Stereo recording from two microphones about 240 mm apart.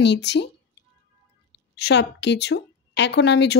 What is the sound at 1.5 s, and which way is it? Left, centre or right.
A woman's voice, left.